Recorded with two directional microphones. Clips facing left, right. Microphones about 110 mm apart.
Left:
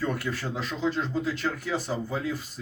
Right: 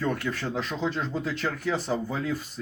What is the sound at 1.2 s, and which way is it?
Speech, 50° right (ahead or behind).